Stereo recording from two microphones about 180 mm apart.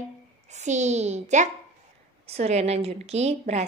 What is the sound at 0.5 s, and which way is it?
A woman's voice, 40° right (ahead or behind).